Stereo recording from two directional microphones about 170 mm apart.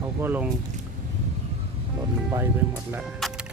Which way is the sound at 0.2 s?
10° right (ahead or behind).